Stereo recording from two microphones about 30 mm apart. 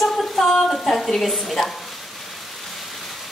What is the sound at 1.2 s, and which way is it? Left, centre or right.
Speech, centre.